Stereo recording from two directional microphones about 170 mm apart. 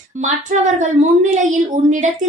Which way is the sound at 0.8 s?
45° right (ahead or behind).